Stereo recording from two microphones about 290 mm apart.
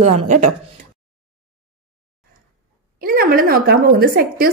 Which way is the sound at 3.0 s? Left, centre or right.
Right.